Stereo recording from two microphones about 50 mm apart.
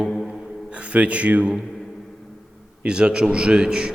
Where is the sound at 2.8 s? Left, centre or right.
Centre.